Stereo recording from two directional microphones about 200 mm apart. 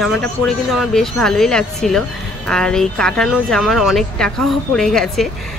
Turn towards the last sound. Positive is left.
turn(degrees=0)  # may be behind; listen again after turning